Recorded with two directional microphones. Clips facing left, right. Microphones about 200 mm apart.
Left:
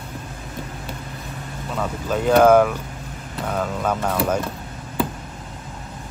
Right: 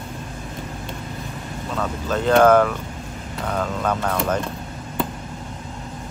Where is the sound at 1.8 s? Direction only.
10° left (ahead or behind).